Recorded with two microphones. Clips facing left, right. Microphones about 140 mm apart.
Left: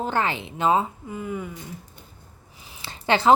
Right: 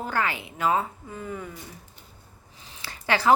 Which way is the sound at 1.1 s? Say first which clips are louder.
Left 4 dB; 10° left (ahead or behind).